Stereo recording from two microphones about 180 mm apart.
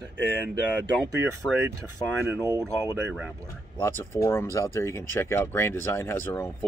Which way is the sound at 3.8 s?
15° left (ahead or behind).